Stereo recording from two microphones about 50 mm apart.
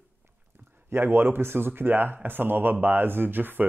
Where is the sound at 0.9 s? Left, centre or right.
Right.